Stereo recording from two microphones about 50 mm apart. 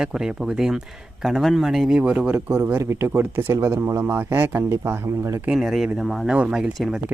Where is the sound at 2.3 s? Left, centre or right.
Right.